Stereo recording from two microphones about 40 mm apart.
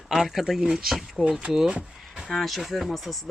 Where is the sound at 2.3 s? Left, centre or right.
Centre.